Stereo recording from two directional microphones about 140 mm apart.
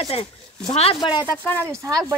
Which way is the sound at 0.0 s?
45° left (ahead or behind).